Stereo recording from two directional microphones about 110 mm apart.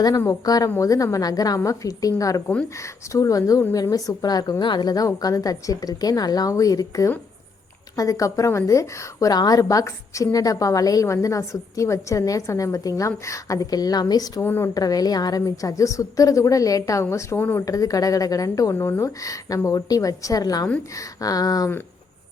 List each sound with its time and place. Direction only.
0.4 s a woman's voice: 35° left (ahead or behind)
14.4 s a woman's voice: 20° left (ahead or behind)
14.7 s a woman's voice: 35° left (ahead or behind)